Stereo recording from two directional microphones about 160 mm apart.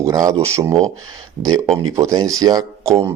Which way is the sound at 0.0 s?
20° right (ahead or behind).